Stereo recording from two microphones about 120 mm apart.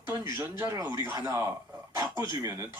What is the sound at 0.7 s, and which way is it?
Speech, 25° right (ahead or behind).